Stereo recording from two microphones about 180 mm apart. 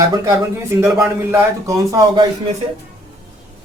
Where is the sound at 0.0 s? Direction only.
15° right (ahead or behind).